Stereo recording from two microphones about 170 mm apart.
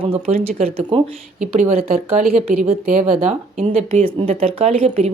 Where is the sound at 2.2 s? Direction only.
55° right (ahead or behind).